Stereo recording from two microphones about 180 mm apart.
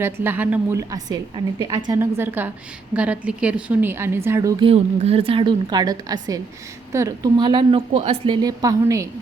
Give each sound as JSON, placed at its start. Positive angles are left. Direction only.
{"t": 0.0, "sound": "a woman's voice", "side_deg": -10}
{"t": 4.7, "sound": "a woman's voice", "side_deg": -35}
{"t": 7.9, "sound": "a woman's voice", "side_deg": -35}
{"t": 8.4, "sound": "a woman's voice", "side_deg": -20}